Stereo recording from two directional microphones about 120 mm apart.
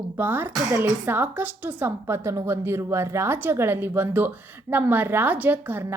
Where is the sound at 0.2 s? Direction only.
15° right (ahead or behind).